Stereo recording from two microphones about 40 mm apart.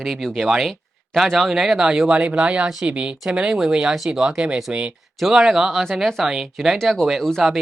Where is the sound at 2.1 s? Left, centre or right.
Right.